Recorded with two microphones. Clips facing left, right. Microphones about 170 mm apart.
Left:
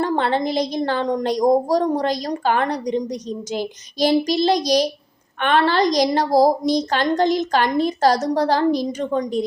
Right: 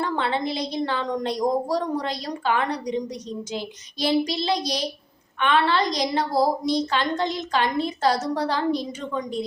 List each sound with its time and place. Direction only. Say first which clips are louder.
0.0 s a woman's voice: left 5 dB; 40° left (ahead or behind)